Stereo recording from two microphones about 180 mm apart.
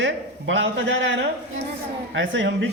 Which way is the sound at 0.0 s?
90° right.